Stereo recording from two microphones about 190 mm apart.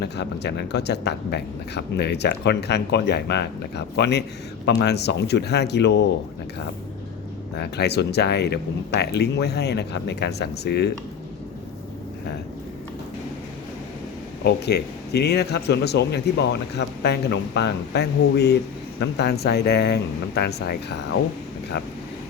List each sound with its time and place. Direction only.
0.0 s a man's voice: 60° left (ahead or behind)
7.5 s a man's voice: 60° left (ahead or behind)
14.4 s a man's voice: 60° left (ahead or behind)